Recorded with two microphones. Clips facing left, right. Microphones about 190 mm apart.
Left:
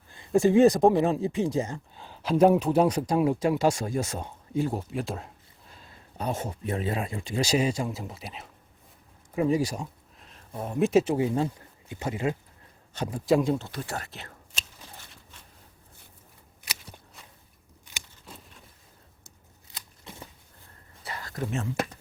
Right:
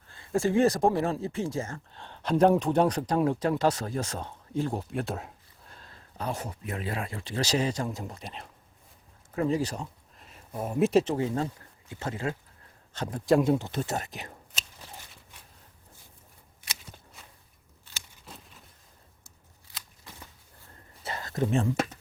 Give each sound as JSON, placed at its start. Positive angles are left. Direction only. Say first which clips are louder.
{"t": 0.1, "sound": "speech", "louder": "left 5 dB", "side_deg": 15}
{"t": 2.0, "sound": "speech", "louder": "left 2 dB", "side_deg": 5}
{"t": 6.1, "sound": "speech", "louder": "left 3 dB", "side_deg": 20}
{"t": 10.2, "sound": "a sound", "louder": "right 1 dB", "side_deg": -5}
{"t": 11.0, "sound": "speech", "louder": "left 3 dB", "side_deg": 10}
{"t": 13.6, "sound": "speech", "louder": "right 4 dB", "side_deg": -20}
{"t": 21.0, "sound": "a sound", "louder": "right 4 dB", "side_deg": -25}